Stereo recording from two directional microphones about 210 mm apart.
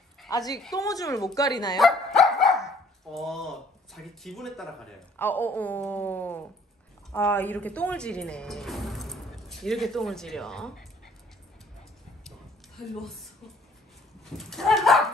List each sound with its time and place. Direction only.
0.3 s speech: 15° left (ahead or behind)
1.8 s dog: centre (ahead or behind)
3.2 s speech: centre (ahead or behind)
14.3 s speech: centre (ahead or behind)